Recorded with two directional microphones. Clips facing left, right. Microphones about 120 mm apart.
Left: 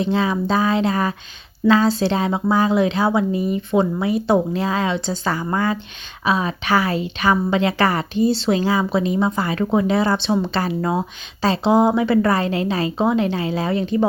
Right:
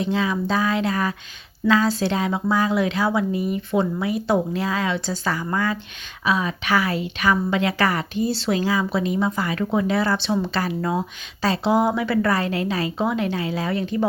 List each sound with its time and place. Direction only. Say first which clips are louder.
0.0 s a woman's voice: left 3 dB; 30° left (ahead or behind)